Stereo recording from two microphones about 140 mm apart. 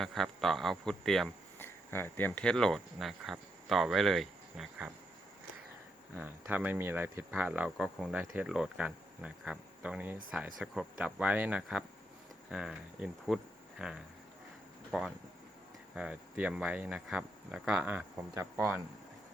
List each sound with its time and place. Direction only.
0.0 s speech: centre (ahead or behind)
1.5 s speech: 15° left (ahead or behind); by 4.9 s 5° right (ahead or behind)
6.1 s speech: 10° right (ahead or behind)
8.2 s speech: 15° right (ahead or behind)